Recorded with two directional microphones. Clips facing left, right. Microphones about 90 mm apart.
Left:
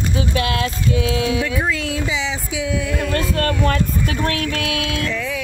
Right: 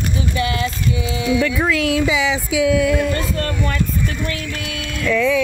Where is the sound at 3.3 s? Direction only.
65° left (ahead or behind).